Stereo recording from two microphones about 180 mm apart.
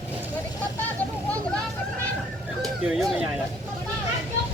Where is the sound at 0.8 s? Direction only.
10° left (ahead or behind).